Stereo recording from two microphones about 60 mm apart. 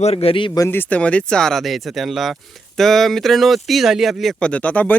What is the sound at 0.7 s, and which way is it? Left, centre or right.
Speech, left.